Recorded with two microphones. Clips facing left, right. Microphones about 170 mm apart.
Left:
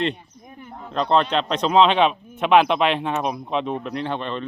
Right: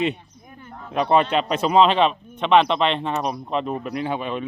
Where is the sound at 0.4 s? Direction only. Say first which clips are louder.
Left 2 dB; 20° left (ahead or behind).